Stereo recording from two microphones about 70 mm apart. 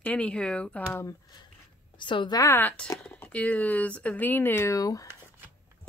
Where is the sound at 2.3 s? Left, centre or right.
Left.